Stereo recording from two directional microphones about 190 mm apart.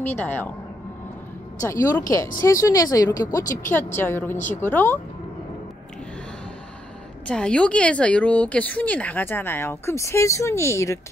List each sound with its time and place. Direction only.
0.0 s speech: 10° left (ahead or behind)
1.6 s speech: 15° left (ahead or behind)
7.2 s speech: 5° left (ahead or behind)